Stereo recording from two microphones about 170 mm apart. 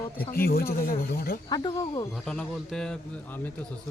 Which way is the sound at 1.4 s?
25° left (ahead or behind).